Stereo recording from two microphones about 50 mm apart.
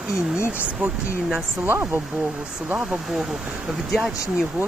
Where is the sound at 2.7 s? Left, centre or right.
Right.